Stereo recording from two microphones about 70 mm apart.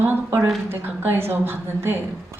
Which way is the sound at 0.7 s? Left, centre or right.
Right.